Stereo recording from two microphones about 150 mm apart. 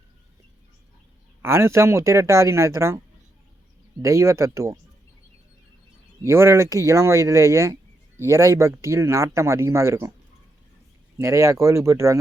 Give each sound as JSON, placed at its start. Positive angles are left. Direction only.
{"t": 1.4, "sound": "speech", "side_deg": -15}
{"t": 4.0, "sound": "speech", "side_deg": -20}
{"t": 6.2, "sound": "speech", "side_deg": -15}
{"t": 11.2, "sound": "speech", "side_deg": -20}